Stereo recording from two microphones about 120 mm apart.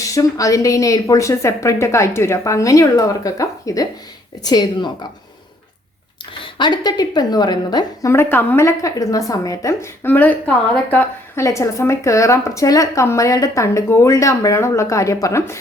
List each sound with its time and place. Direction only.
0.0 s a woman's voice: 25° left (ahead or behind)
6.6 s a woman's voice: 35° left (ahead or behind)
8.1 s a woman's voice: 20° left (ahead or behind)
11.3 s a woman's voice: 25° left (ahead or behind)